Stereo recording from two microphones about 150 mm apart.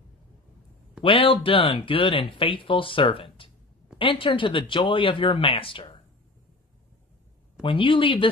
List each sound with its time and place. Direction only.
1.0 s speech: 35° left (ahead or behind)
7.6 s speech: 35° left (ahead or behind)